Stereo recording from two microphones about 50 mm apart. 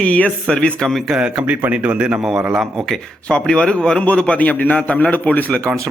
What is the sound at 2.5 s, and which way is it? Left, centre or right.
Speech, centre.